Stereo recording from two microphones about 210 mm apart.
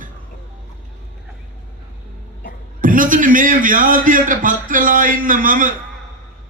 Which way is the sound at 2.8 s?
40° right (ahead or behind).